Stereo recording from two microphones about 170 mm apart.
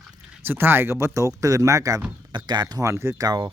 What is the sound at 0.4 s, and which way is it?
Speech, 10° right (ahead or behind).